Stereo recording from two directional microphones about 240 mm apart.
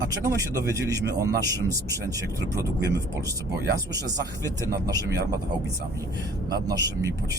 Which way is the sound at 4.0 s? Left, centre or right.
Centre.